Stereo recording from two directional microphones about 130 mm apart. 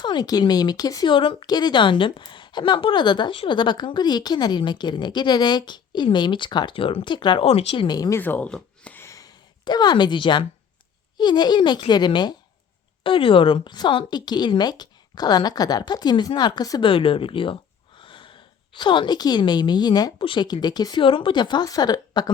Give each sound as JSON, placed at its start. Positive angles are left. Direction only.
{"t": 0.0, "sound": "speech", "side_deg": 35}
{"t": 7.9, "sound": "speech", "side_deg": 30}
{"t": 8.2, "sound": "speech", "side_deg": 10}
{"t": 9.0, "sound": "a sound", "side_deg": 25}
{"t": 11.2, "sound": "speech", "side_deg": 35}
{"t": 16.9, "sound": "speech", "side_deg": 45}